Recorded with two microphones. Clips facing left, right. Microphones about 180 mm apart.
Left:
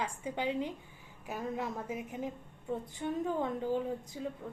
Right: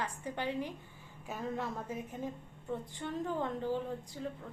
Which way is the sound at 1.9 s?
15° left (ahead or behind).